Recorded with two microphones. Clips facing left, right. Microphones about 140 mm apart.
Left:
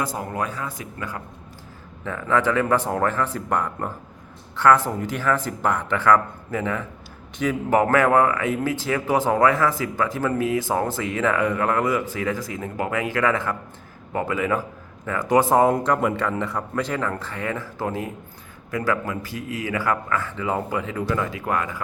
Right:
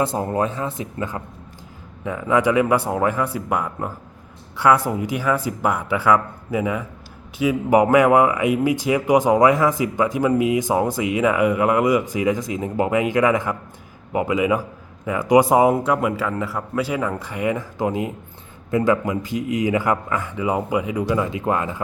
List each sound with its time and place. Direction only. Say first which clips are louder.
0.0 s a man's voice: right 6 dB; 30° right (ahead or behind)